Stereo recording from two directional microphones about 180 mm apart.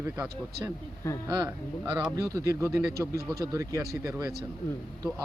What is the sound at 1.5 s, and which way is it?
Speech, 10° right (ahead or behind).